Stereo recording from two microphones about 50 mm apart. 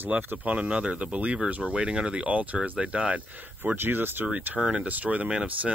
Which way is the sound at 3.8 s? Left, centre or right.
Right.